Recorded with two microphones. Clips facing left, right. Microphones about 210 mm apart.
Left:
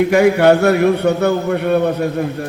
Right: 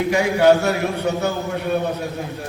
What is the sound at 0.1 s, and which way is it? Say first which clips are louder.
A man's voice: left 1 dB; 60° left (ahead or behind).